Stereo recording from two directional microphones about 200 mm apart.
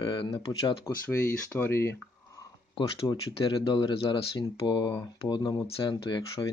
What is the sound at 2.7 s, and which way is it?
Speech, 20° left (ahead or behind).